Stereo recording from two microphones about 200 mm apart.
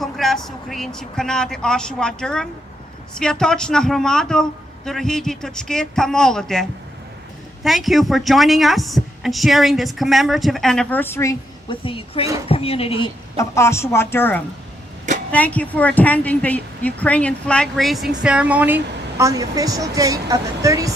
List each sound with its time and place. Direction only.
0.0 s a sound: centre (ahead or behind)
0.4 s a woman's voice: centre (ahead or behind)
11.7 s speech: 25° left (ahead or behind)
13.3 s a woman's voice: 15° left (ahead or behind); by 20.9 s 15° right (ahead or behind)